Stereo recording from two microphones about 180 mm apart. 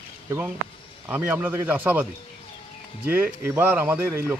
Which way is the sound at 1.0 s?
10° right (ahead or behind).